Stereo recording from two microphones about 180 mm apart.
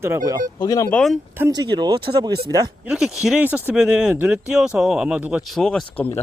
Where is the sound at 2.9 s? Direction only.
5° right (ahead or behind).